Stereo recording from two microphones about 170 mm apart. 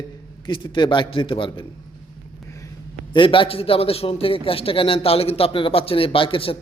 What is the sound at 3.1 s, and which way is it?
A man's voice, 30° left (ahead or behind).